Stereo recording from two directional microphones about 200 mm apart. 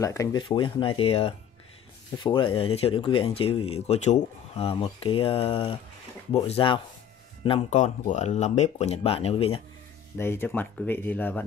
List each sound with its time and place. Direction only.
0.0 s speech: 15° left (ahead or behind)
10.1 s speech: 10° left (ahead or behind)